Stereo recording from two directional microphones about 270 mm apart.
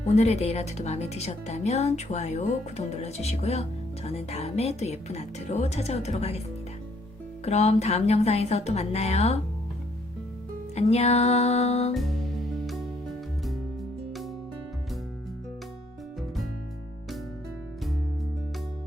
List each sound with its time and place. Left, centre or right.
0.2 s speech: left
7.4 s speech: left
10.8 s speech: left
11.9 s music: centre